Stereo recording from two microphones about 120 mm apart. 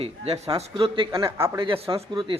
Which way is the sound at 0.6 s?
50° right (ahead or behind).